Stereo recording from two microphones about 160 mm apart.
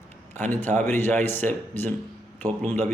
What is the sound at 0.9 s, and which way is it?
A man's voice, 15° left (ahead or behind).